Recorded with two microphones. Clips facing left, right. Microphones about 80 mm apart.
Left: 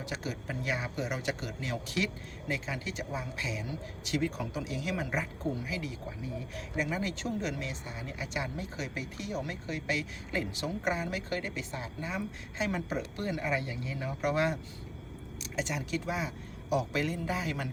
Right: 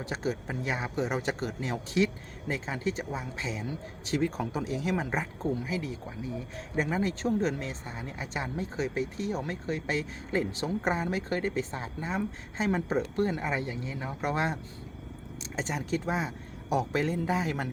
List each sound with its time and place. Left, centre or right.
0.0 s speech: right